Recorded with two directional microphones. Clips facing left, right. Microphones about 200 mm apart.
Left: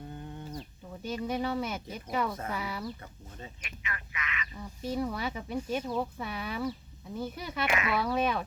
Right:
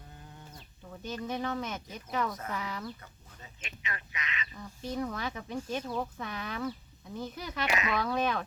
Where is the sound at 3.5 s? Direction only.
25° right (ahead or behind).